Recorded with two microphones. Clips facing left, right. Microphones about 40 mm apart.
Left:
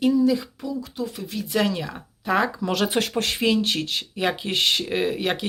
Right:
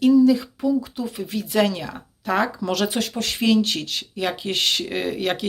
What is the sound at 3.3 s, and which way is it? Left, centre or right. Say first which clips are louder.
Speech: right 4 dB; centre.